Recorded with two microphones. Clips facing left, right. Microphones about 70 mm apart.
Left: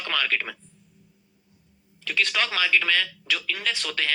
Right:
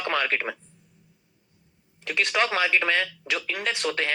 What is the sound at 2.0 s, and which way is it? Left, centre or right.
Speech, centre.